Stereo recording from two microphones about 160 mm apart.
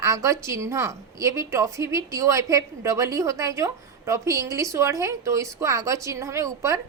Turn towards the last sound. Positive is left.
turn(degrees=-20)  # may be behind; listen again after turning